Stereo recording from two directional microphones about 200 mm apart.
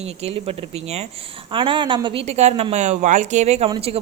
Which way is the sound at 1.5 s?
25° right (ahead or behind).